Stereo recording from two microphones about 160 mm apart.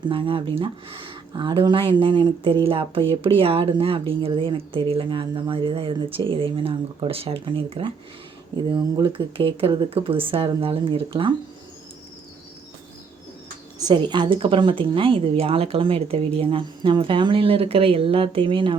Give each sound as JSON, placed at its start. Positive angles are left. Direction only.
{"t": 0.0, "sound": "speech", "side_deg": -30}
{"t": 13.7, "sound": "speech", "side_deg": -25}